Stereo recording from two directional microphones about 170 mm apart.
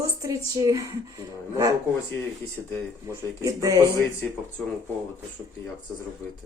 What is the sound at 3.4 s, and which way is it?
Speech, 20° right (ahead or behind).